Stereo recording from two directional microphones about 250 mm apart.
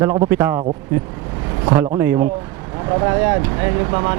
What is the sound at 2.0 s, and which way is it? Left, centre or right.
Speech, centre.